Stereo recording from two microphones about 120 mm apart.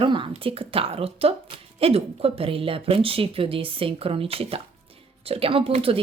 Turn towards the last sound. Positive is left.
turn(degrees=-55)  # may be behind; listen again after turning